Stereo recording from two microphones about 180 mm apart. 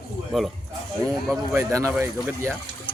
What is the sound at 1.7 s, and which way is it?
Speech, 15° right (ahead or behind).